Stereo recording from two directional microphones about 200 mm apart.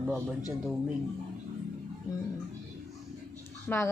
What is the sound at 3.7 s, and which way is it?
Speech, 5° left (ahead or behind).